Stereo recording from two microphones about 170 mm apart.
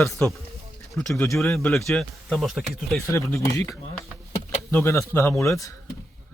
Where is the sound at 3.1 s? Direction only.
15° left (ahead or behind).